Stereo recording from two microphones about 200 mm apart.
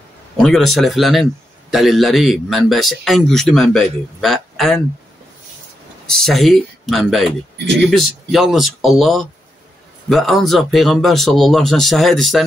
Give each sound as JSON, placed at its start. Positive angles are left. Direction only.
{"t": 0.4, "sound": "a man's voice", "side_deg": 0}
{"t": 6.0, "sound": "a man's voice", "side_deg": 0}
{"t": 7.5, "sound": "speech", "side_deg": -60}
{"t": 7.9, "sound": "a man's voice", "side_deg": 0}